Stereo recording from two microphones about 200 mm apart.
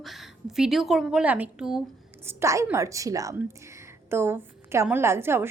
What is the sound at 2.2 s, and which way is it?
A woman's voice, 15° right (ahead or behind).